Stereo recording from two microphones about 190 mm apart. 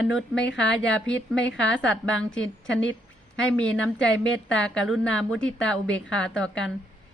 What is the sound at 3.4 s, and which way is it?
A woman's voice, 5° left (ahead or behind).